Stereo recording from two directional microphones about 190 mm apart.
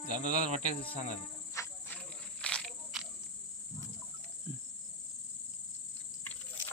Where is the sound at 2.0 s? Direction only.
5° left (ahead or behind).